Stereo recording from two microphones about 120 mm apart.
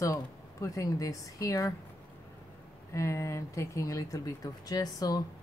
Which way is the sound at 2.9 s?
25° left (ahead or behind).